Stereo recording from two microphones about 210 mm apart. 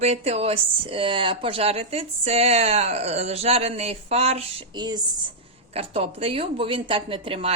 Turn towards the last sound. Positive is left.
turn(degrees=-25)  # may be behind; listen again after turning